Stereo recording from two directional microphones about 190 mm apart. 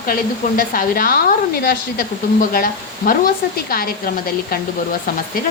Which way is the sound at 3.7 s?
50° left (ahead or behind).